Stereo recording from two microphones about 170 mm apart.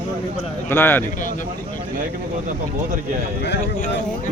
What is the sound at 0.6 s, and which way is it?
Speech, 10° left (ahead or behind).